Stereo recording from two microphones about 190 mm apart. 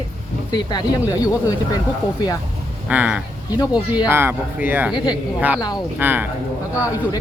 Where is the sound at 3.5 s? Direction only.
20° left (ahead or behind).